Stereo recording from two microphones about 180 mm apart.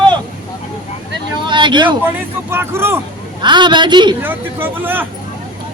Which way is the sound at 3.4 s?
25° right (ahead or behind).